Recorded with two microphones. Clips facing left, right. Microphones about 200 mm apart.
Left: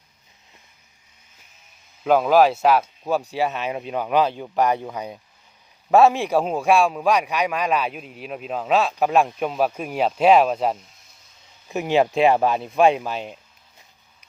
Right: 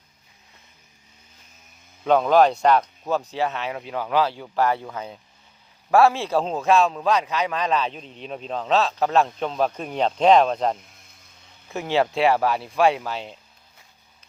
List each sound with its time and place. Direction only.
2.0 s a man's voice: 5° left (ahead or behind)